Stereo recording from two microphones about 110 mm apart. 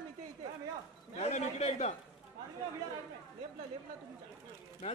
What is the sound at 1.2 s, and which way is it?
Speech, 85° left.